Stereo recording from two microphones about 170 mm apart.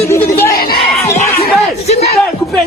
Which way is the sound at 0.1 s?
15° left (ahead or behind).